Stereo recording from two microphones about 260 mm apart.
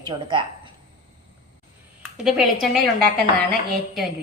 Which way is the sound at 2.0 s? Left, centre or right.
Centre.